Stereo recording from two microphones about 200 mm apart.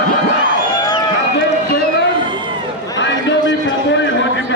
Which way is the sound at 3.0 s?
65° left (ahead or behind).